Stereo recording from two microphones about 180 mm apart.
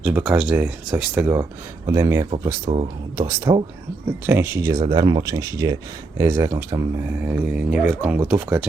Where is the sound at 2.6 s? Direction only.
35° right (ahead or behind).